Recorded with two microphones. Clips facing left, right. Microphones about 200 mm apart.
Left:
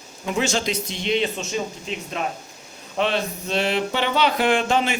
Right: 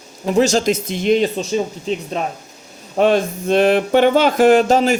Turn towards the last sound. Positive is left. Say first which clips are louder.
# right 8 dB
turn(degrees=-40)  # may be behind; listen again after turning